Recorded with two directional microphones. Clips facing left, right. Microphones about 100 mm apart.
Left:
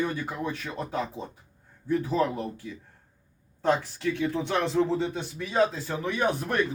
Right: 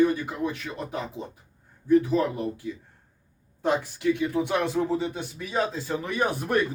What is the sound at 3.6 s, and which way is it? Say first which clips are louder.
Speech: even; 15° right (ahead or behind).